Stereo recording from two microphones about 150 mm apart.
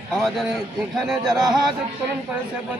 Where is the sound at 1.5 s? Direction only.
Centre (ahead or behind).